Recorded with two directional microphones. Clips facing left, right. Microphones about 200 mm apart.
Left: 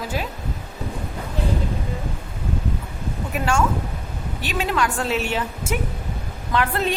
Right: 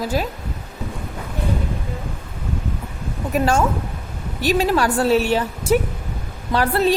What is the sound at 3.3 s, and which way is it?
A woman's voice, 40° right (ahead or behind).